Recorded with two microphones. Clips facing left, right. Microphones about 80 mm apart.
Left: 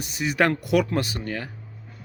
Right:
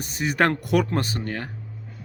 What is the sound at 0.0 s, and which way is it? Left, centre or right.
A man's voice, right.